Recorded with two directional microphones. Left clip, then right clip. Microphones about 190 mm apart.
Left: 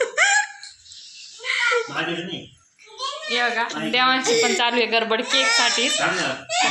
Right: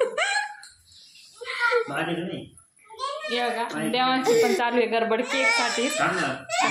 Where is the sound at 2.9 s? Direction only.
5° right (ahead or behind).